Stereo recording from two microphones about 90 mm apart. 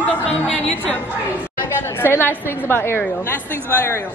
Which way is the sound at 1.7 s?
25° left (ahead or behind).